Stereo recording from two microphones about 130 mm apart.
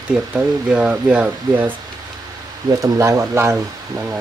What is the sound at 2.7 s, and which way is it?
Speech, 25° right (ahead or behind).